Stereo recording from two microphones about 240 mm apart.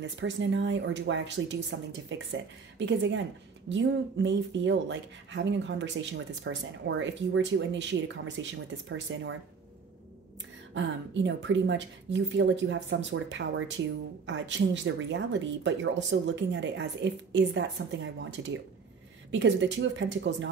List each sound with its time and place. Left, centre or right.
0.0 s speech: right
10.7 s speech: right